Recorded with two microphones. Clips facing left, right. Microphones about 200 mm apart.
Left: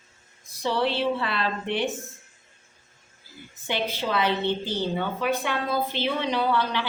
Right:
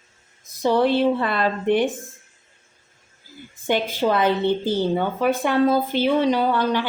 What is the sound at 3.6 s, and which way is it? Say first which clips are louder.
A woman's voice: right 7 dB; 50° right (ahead or behind).